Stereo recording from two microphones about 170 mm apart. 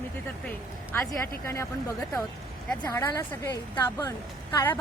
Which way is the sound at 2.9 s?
15° left (ahead or behind).